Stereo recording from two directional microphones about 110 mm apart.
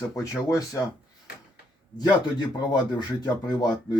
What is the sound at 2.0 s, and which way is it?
Speech, 40° left (ahead or behind).